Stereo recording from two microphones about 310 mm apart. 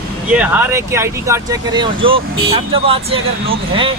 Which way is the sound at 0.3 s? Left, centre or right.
Centre.